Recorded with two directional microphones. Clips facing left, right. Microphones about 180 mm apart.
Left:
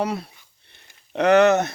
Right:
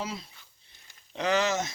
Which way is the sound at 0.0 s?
65° left (ahead or behind).